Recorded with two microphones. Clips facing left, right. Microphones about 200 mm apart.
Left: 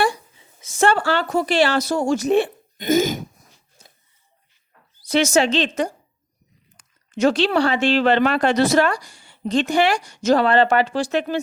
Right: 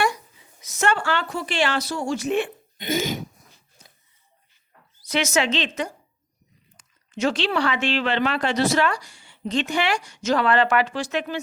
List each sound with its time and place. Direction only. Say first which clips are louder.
0.0 s speech: left 3 dB; 30° left (ahead or behind); by 3.2 s 45° left (ahead or behind)
5.0 s speech: left 5 dB; 30° left (ahead or behind)